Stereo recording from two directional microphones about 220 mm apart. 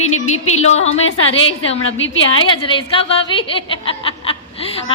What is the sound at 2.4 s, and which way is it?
A woman's voice, 25° left (ahead or behind).